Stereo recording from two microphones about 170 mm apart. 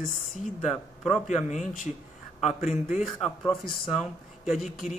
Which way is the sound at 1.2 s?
45° left (ahead or behind).